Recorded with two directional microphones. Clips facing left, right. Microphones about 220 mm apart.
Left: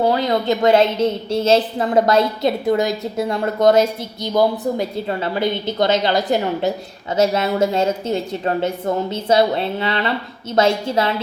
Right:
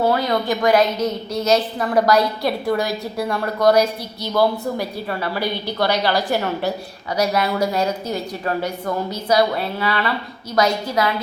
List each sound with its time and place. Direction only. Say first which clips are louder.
0.0 s a woman's voice: left 1 dB; 20° left (ahead or behind)